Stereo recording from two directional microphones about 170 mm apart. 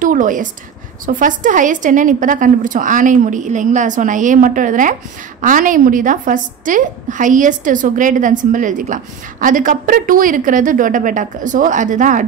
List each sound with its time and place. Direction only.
0.0 s a woman's voice: 50° right (ahead or behind)